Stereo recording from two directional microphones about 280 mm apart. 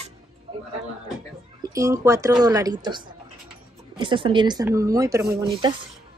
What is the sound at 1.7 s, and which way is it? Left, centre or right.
Speech, centre.